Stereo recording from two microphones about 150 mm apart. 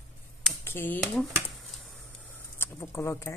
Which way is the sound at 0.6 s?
15° left (ahead or behind).